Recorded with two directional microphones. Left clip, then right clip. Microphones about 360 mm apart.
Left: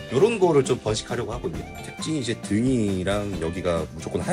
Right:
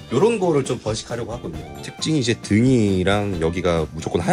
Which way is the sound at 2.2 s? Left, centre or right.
Right.